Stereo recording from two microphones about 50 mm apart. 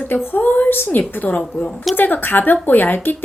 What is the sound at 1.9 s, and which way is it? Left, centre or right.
Speech, left.